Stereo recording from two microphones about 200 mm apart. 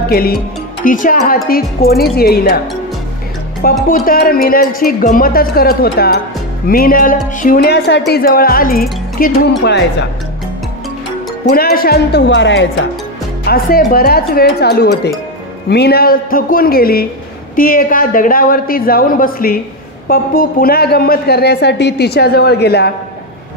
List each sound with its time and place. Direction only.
0.0 s a man's voice: 50° left (ahead or behind)
3.9 s a man's voice: 45° left (ahead or behind)
9.6 s speech: 60° left (ahead or behind)
11.4 s a man's voice: 50° left (ahead or behind); by 12.6 s 65° left (ahead or behind)
13.4 s a man's voice: 50° left (ahead or behind)